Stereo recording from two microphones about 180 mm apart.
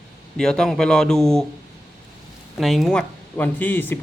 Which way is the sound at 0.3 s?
5° left (ahead or behind).